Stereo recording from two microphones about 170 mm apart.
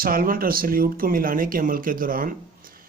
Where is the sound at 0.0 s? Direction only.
55° right (ahead or behind).